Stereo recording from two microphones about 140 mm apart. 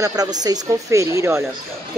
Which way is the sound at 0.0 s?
25° right (ahead or behind).